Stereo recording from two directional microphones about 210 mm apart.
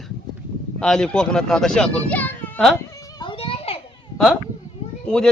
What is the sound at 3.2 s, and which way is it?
Children playing, 25° left (ahead or behind).